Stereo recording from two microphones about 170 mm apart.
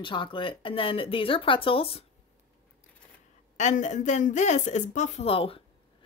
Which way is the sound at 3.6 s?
45° left (ahead or behind).